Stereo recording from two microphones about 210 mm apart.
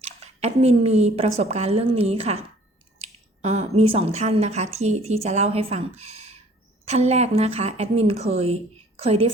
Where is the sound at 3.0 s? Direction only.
30° right (ahead or behind).